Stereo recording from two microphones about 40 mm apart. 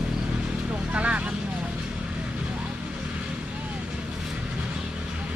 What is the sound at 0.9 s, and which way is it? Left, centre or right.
Vehicle, right.